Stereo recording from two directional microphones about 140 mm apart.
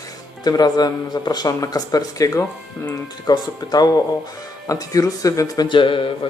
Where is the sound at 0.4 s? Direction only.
30° left (ahead or behind).